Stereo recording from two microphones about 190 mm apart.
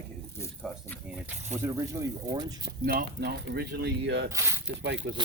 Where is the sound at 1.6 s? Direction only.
15° right (ahead or behind).